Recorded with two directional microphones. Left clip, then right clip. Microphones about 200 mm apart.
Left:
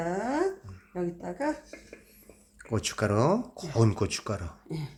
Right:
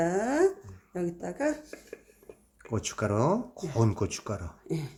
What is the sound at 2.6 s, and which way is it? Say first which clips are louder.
Speech: left 2 dB; centre (ahead or behind).